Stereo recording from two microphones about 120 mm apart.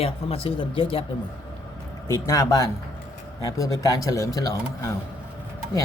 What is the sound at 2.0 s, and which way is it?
Speech, 25° left (ahead or behind).